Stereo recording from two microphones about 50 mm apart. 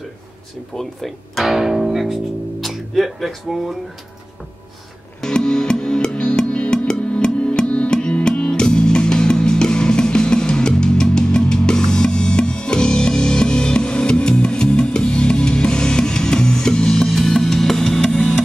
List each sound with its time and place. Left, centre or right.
0.7 s speech: centre
5.2 s music: centre